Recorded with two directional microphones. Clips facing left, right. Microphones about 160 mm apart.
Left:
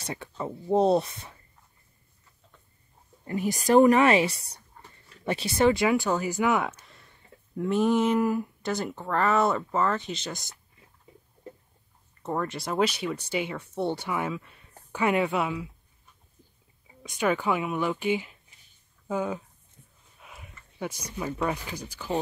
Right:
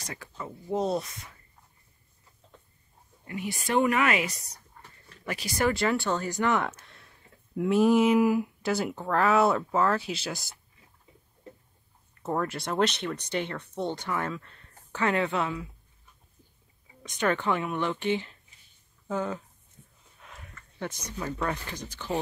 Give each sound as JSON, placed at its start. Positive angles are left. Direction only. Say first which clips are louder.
{"t": 0.0, "sound": "speech", "louder": "left 6 dB", "side_deg": 25}
{"t": 3.3, "sound": "speech", "louder": "left 7 dB", "side_deg": 40}
{"t": 5.9, "sound": "speech", "louder": "left 3 dB", "side_deg": 10}
{"t": 12.2, "sound": "speech", "louder": "right 1 dB", "side_deg": 0}
{"t": 17.0, "sound": "speech", "louder": "left 1 dB", "side_deg": 5}